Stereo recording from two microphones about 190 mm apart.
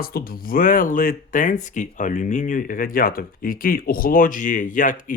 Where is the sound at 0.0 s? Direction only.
50° left (ahead or behind).